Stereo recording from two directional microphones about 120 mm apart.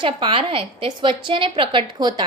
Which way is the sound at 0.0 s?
45° right (ahead or behind).